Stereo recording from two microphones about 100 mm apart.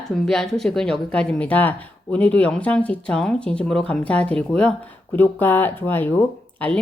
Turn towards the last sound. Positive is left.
turn(degrees=15)  # may be behind; listen again after turning